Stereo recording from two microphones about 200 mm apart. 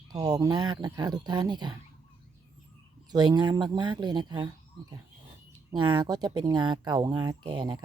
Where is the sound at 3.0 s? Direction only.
20° right (ahead or behind).